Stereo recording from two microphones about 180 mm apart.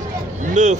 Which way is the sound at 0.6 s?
40° right (ahead or behind).